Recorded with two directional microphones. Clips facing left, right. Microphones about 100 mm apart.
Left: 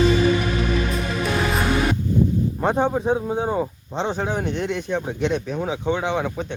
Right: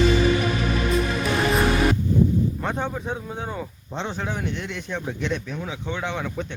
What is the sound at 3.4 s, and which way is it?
Speech, 40° left (ahead or behind).